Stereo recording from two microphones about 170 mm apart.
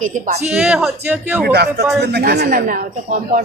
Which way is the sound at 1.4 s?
70° right (ahead or behind).